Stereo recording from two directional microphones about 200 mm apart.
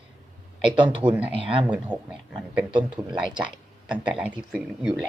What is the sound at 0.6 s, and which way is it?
Speech, 25° right (ahead or behind).